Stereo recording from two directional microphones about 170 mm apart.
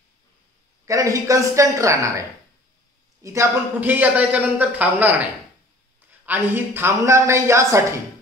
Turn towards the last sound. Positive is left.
turn(degrees=-15)  # may be behind; listen again after turning